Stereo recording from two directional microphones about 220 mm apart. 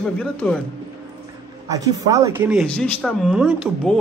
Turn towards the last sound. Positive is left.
turn(degrees=-5)  # may be behind; listen again after turning